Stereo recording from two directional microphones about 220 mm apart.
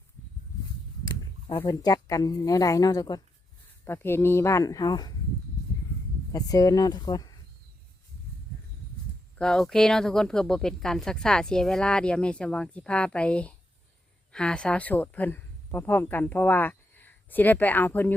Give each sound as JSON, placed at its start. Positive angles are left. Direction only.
{"t": 1.5, "sound": "speech", "side_deg": 20}
{"t": 6.3, "sound": "speech", "side_deg": 15}
{"t": 9.4, "sound": "speech", "side_deg": 0}